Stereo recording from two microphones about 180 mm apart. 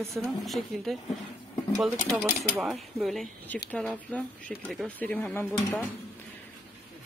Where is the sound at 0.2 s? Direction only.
Centre (ahead or behind).